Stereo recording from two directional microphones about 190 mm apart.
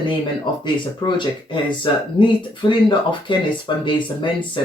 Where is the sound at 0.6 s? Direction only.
25° left (ahead or behind).